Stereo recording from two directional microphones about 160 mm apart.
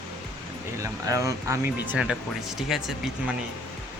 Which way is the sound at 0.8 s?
20° right (ahead or behind).